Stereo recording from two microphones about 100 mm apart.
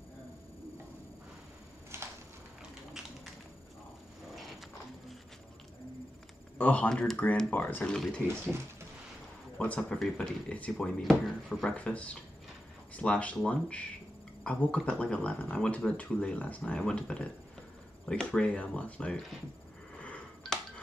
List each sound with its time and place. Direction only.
1.9 s a sound: 25° right (ahead or behind)
6.6 s speech: 15° left (ahead or behind)
6.9 s speech: 5° left (ahead or behind)
7.9 s speech: 5° left (ahead or behind)
9.6 s speech: 10° left (ahead or behind)
11.0 s speech: 5° left (ahead or behind)
11.7 s speech: 15° left (ahead or behind)
20.0 s a sound: 15° left (ahead or behind)